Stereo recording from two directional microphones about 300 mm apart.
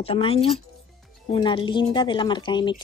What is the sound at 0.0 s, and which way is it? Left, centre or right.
Speech, centre.